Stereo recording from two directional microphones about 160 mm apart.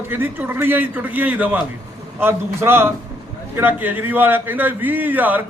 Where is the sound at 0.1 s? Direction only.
10° right (ahead or behind).